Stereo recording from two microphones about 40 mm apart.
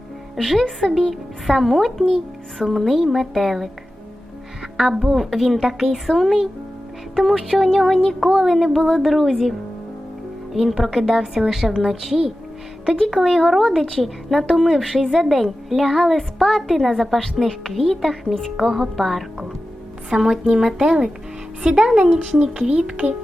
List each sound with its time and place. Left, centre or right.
0.3 s speech: centre
4.8 s speech: centre
20.1 s speech: centre